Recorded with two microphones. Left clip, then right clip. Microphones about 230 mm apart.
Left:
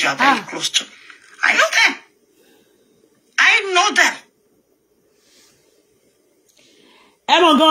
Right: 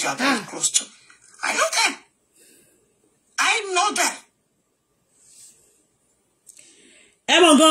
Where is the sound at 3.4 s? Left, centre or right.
Left.